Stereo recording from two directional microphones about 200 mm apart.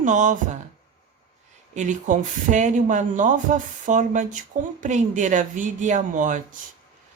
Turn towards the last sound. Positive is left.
turn(degrees=-40)  # may be behind; listen again after turning